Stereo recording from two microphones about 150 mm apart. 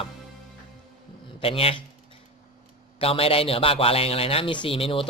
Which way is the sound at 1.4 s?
40° left (ahead or behind).